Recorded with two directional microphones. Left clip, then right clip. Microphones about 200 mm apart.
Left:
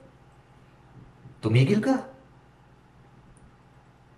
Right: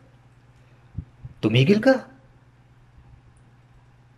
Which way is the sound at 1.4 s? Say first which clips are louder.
Right 6 dB; 50° right (ahead or behind).